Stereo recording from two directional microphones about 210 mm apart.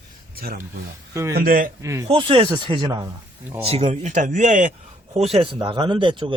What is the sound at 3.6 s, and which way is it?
Speech, 30° right (ahead or behind).